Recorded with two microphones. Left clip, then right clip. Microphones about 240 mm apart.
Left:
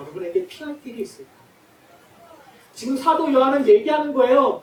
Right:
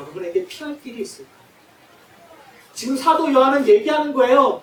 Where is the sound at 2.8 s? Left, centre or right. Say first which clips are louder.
Right 2 dB; centre.